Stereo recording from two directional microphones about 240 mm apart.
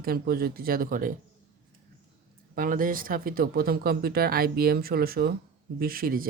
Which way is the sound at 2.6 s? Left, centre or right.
Right.